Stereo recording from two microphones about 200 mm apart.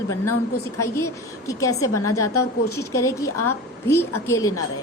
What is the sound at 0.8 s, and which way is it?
A woman's voice, 15° left (ahead or behind).